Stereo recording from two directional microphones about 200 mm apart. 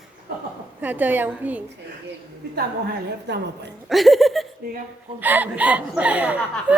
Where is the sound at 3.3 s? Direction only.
55° right (ahead or behind).